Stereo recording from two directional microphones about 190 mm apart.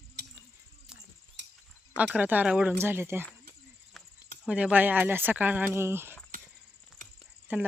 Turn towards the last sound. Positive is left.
turn(degrees=-10)  # may be behind; listen again after turning